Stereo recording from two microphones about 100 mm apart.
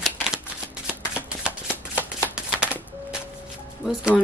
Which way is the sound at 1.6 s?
25° left (ahead or behind).